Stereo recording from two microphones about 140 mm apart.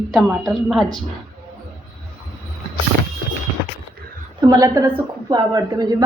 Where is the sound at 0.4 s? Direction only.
Centre (ahead or behind).